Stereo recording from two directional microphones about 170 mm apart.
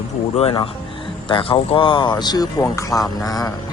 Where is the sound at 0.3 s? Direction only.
30° left (ahead or behind).